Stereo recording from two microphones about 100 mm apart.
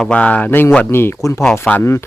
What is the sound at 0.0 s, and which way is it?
Speech, 10° left (ahead or behind).